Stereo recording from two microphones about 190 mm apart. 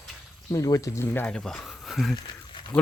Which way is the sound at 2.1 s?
25° left (ahead or behind).